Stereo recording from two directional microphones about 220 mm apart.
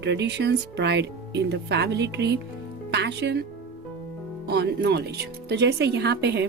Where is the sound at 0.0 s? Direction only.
50° right (ahead or behind).